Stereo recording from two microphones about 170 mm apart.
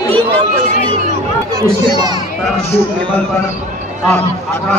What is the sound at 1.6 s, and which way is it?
Speech, 20° right (ahead or behind).